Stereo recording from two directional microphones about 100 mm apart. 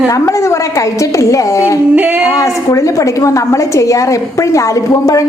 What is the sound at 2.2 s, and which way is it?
A woman's voice, 35° left (ahead or behind).